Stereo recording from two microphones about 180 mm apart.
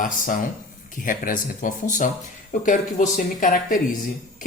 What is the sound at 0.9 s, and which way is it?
A woman's voice, 50° left (ahead or behind).